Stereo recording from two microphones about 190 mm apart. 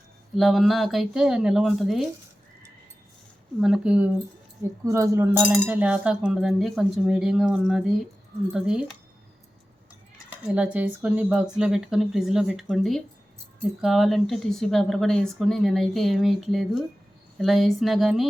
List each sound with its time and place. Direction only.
0.3 s speech: centre (ahead or behind)
3.6 s speech: 5° right (ahead or behind)
10.4 s speech: 5° right (ahead or behind)